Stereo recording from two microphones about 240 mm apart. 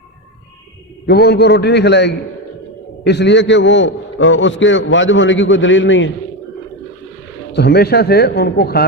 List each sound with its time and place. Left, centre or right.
1.0 s a man's voice: left
7.5 s a man's voice: left